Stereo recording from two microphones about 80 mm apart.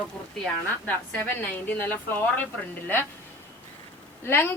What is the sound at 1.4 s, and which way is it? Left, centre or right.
A woman's voice, left.